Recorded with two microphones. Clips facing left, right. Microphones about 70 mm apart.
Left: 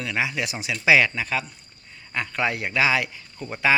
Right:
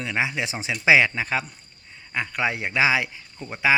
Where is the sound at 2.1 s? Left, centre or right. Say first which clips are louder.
Even; centre.